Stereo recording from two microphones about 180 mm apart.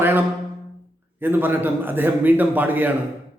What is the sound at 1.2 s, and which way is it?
A man's voice, 10° right (ahead or behind).